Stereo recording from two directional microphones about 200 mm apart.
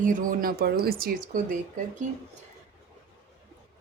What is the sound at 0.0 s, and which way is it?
A woman's voice, 40° right (ahead or behind).